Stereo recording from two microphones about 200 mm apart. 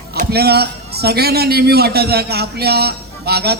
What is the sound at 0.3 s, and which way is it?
A man's voice, 55° right (ahead or behind).